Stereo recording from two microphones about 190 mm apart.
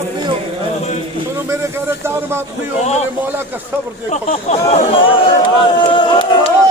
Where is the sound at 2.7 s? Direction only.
35° left (ahead or behind).